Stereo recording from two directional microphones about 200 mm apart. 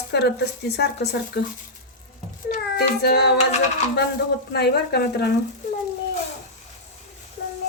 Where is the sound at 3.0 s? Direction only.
55° left (ahead or behind).